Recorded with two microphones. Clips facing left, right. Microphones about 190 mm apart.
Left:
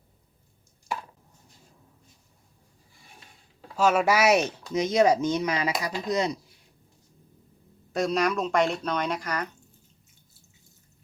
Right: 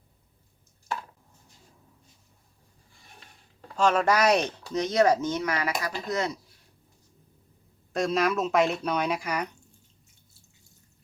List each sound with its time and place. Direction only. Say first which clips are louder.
3.6 s speech: left 1 dB; 5° left (ahead or behind)
7.9 s speech: even; centre (ahead or behind)